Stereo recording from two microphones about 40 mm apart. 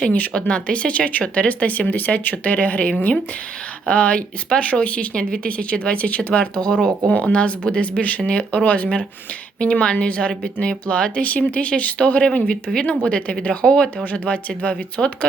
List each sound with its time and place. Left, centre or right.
0.1 s speech: left
11.2 s speech: left
14.0 s speech: left